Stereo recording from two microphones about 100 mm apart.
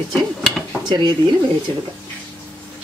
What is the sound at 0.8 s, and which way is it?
Speech, 50° right (ahead or behind).